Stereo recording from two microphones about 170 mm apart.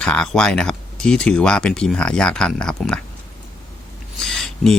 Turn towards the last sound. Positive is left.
turn(degrees=0)  # may be behind; listen again after turning